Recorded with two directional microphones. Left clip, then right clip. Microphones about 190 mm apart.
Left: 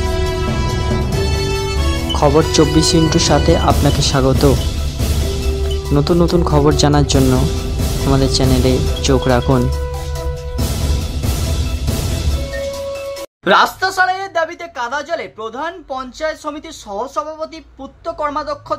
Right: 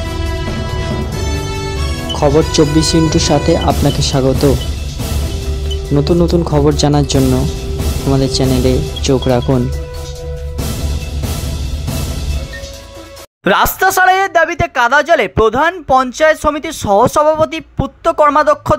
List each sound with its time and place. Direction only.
2.1 s speech: centre (ahead or behind)
5.9 s speech: centre (ahead or behind)
13.4 s speech: 35° right (ahead or behind)
17.0 s speech: 45° right (ahead or behind)